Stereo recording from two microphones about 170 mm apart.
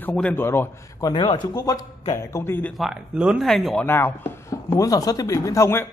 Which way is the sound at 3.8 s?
10° left (ahead or behind).